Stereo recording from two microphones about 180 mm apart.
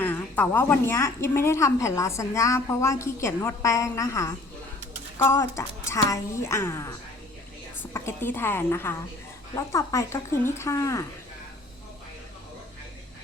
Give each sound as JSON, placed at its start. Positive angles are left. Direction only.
{"t": 0.0, "sound": "a woman's voice", "side_deg": 10}